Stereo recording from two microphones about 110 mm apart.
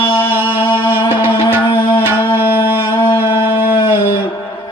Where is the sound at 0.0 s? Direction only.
50° left (ahead or behind).